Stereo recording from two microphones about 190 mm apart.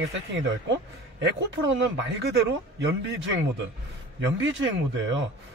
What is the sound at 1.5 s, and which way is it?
Speech, 80° right.